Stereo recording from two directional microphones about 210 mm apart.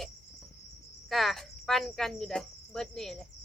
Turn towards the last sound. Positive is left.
turn(degrees=0)  # may be behind; listen again after turning